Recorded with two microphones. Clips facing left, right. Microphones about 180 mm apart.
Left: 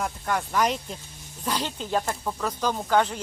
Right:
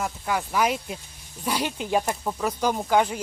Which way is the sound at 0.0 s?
5° right (ahead or behind).